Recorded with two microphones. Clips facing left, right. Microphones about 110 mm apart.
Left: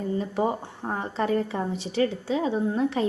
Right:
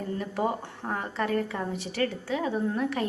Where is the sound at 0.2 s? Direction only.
20° left (ahead or behind).